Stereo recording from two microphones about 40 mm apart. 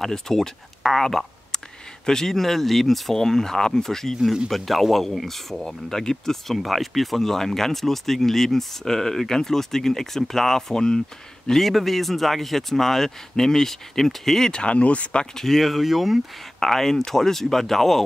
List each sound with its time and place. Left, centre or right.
0.0 s speech: centre
14.5 s speech: left
15.3 s speech: centre
16.5 s speech: centre